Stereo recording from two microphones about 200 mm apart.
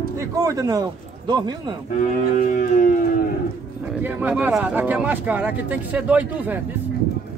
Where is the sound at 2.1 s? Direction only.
40° left (ahead or behind).